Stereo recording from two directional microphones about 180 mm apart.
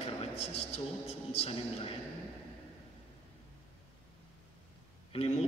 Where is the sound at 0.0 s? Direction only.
35° left (ahead or behind).